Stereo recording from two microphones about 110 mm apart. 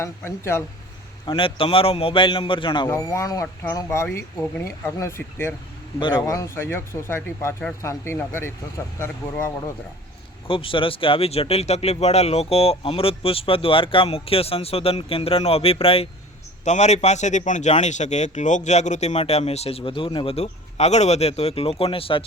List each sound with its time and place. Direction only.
0.0 s speech: 25° left (ahead or behind)
1.2 s a man's voice: 50° left (ahead or behind)
2.9 s speech: 25° left (ahead or behind)
10.4 s speech: 55° left (ahead or behind)
16.6 s a man's voice: 90° left; by 22.2 s 55° left (ahead or behind)